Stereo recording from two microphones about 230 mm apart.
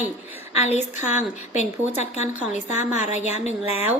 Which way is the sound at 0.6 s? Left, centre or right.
Left.